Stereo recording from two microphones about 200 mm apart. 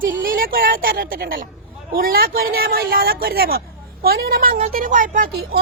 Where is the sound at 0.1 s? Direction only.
45° right (ahead or behind).